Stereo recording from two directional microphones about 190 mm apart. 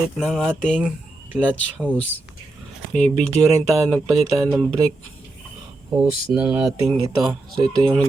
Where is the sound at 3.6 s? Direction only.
15° right (ahead or behind).